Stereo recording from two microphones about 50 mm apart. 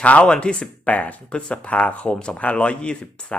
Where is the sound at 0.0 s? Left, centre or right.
Left.